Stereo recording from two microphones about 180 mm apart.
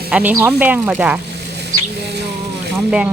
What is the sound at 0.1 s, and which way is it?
Speech, 10° right (ahead or behind).